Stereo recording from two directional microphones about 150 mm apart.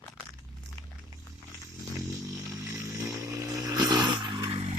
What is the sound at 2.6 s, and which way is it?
Vehicle, 25° right (ahead or behind).